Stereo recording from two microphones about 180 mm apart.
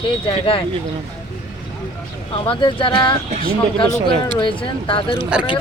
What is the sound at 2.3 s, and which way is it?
Speech, 30° left (ahead or behind).